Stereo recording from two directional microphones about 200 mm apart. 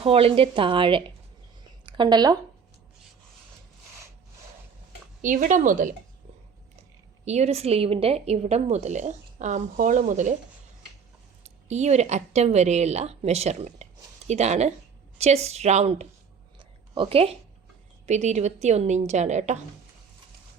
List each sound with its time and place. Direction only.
0.0 s speech: 30° right (ahead or behind)
5.2 s speech: 40° right (ahead or behind)
7.3 s speech: 35° right (ahead or behind)
11.4 s speech: 35° right (ahead or behind)
16.6 s a sound: 25° right (ahead or behind)
18.0 s speech: 35° right (ahead or behind)